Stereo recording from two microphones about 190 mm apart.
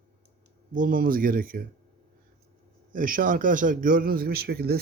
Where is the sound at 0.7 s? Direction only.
45° right (ahead or behind).